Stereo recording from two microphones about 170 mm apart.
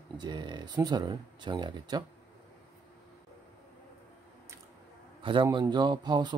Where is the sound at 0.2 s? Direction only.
25° right (ahead or behind).